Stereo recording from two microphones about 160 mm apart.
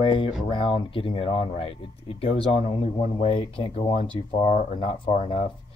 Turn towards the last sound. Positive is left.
turn(degrees=40)  # may be behind; listen again after turning